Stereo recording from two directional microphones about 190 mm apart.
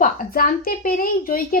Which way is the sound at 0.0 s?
50° left (ahead or behind).